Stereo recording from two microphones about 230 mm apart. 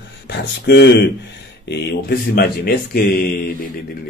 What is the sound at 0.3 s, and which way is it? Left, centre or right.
Speech, left.